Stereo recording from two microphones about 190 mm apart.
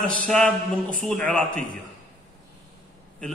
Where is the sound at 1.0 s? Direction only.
5° left (ahead or behind).